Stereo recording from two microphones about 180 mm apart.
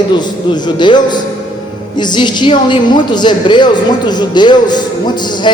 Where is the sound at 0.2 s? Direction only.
25° left (ahead or behind).